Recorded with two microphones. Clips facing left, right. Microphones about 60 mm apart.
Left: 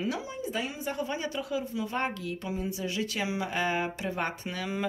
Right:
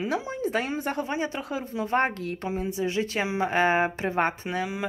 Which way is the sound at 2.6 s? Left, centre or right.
Right.